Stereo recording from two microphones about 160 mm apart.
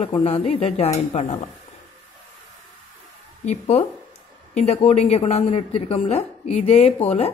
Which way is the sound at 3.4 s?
45° left (ahead or behind).